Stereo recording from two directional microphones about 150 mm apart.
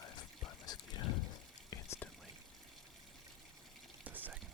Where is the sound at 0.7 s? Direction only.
25° left (ahead or behind).